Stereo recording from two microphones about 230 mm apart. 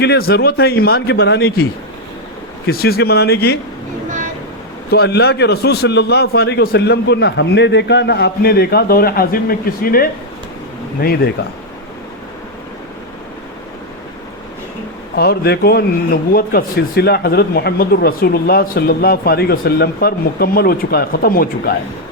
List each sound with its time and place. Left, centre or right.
0.0 s a man's voice: left
2.6 s a man's voice: left
4.9 s a man's voice: left
11.4 s a man's voice: left
15.1 s a man's voice: left